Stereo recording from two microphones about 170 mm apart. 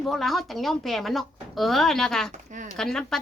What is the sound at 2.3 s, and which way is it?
Speech, 45° right (ahead or behind).